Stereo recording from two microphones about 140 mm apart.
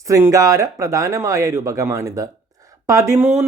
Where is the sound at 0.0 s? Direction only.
20° right (ahead or behind).